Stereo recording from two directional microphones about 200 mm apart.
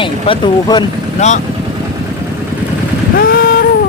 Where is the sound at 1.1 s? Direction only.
35° left (ahead or behind).